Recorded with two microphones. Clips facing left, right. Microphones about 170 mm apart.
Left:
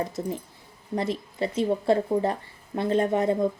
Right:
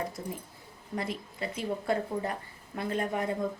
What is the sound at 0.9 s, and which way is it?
Speech, 25° left (ahead or behind).